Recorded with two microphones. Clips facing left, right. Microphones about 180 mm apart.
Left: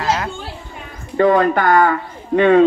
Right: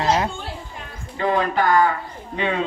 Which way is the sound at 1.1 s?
50° left (ahead or behind).